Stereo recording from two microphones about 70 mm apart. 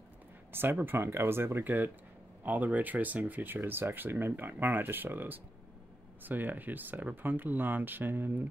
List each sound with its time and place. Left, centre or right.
0.5 s speech: right